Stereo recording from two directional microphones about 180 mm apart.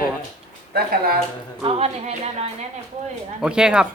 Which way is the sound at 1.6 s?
35° right (ahead or behind).